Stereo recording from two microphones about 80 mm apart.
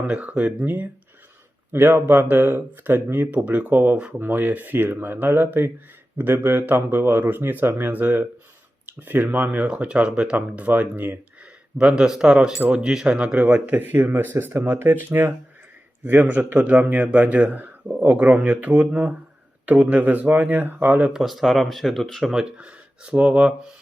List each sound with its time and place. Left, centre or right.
0.1 s speech: centre
11.8 s speech: centre
21.1 s speech: centre